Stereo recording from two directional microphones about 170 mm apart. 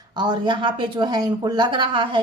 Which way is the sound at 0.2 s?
25° right (ahead or behind).